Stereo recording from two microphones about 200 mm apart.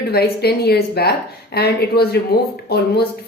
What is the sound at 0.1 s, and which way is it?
A woman's voice, 50° left (ahead or behind).